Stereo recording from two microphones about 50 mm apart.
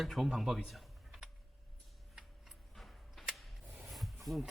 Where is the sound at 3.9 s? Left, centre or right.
Centre.